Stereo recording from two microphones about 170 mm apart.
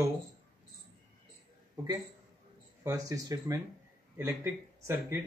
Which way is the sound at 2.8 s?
20° right (ahead or behind).